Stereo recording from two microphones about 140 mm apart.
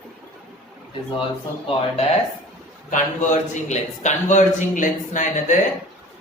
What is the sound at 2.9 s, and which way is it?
A man's voice, 60° left (ahead or behind).